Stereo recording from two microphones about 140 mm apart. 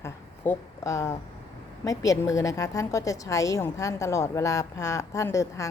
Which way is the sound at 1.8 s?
25° left (ahead or behind).